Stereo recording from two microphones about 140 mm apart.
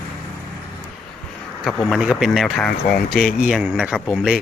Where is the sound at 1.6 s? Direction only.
Centre (ahead or behind).